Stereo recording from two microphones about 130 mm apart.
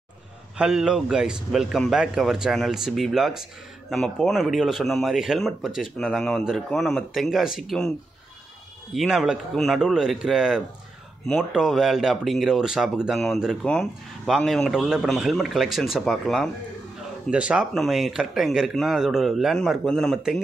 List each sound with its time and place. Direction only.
0.6 s speech: 5° right (ahead or behind)
8.9 s speech: 5° right (ahead or behind)
17.3 s speech: 10° right (ahead or behind)